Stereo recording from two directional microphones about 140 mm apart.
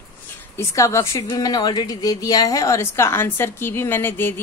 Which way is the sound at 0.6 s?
20° left (ahead or behind).